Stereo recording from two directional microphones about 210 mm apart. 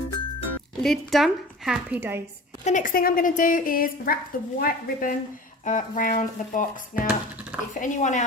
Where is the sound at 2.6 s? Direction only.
40° left (ahead or behind).